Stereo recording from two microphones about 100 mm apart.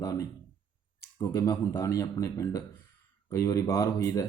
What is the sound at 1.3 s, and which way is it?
Speech, 35° left (ahead or behind).